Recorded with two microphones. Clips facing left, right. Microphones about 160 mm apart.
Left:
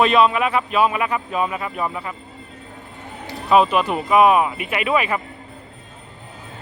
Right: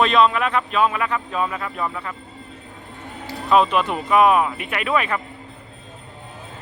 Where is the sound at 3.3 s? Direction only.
20° left (ahead or behind).